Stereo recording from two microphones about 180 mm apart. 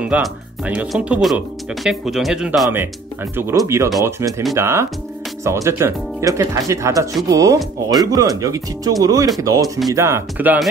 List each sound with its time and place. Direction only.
0.0 s speech: 5° right (ahead or behind)
3.3 s speech: 15° right (ahead or behind)